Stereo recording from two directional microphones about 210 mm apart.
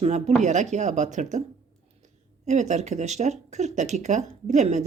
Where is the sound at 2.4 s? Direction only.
35° right (ahead or behind).